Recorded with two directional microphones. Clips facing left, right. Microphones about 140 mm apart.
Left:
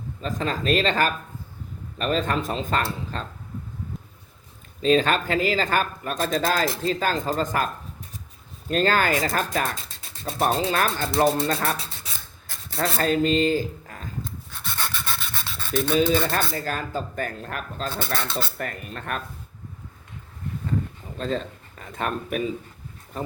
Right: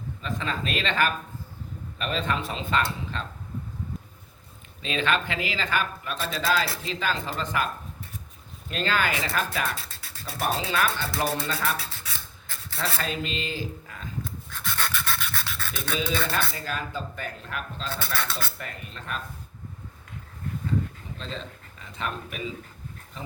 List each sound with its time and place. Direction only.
0.2 s speech: 40° left (ahead or behind)
4.8 s speech: 40° left (ahead or behind)
8.7 s speech: 45° left (ahead or behind)
10.0 s a sound: 25° left (ahead or behind)
10.4 s speech: 45° left (ahead or behind)
12.7 s speech: 45° left (ahead or behind)
14.5 s pant: 15° left (ahead or behind)
15.7 s speech: 40° left (ahead or behind)
21.2 s speech: 50° left (ahead or behind)